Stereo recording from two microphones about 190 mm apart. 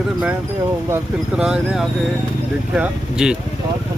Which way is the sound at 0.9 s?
5° right (ahead or behind).